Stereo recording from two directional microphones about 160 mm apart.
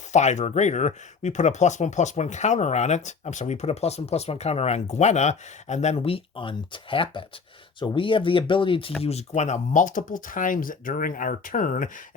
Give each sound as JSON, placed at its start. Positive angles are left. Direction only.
{"t": 0.1, "sound": "speech", "side_deg": 45}